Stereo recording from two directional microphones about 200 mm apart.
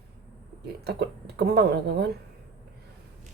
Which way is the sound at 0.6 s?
55° right (ahead or behind).